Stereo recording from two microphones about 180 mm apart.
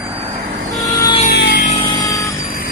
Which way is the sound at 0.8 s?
20° left (ahead or behind).